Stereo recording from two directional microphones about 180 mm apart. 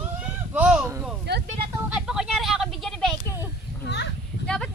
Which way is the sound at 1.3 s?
65° right (ahead or behind).